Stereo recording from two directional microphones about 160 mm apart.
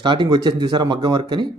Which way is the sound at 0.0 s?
30° right (ahead or behind).